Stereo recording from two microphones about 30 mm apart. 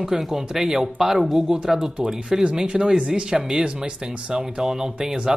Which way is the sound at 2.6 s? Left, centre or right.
Right.